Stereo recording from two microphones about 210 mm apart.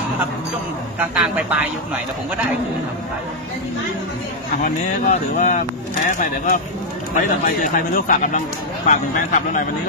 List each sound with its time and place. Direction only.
0.9 s speech: 5° right (ahead or behind)
4.6 s speech: 35° left (ahead or behind)